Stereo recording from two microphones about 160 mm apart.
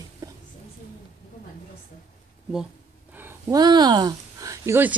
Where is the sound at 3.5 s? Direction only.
25° right (ahead or behind).